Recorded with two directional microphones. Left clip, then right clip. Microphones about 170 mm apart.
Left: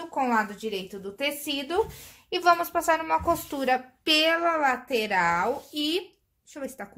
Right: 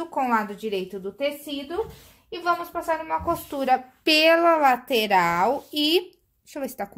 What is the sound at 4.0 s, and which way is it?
A woman's voice, 35° right (ahead or behind).